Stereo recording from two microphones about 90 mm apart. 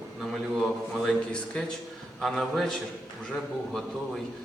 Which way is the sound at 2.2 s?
Centre (ahead or behind).